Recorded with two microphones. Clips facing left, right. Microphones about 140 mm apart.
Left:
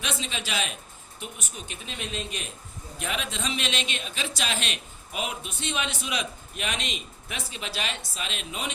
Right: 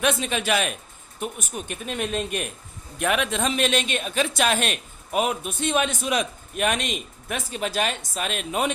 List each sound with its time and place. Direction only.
0.0 s a man's voice: 55° right (ahead or behind)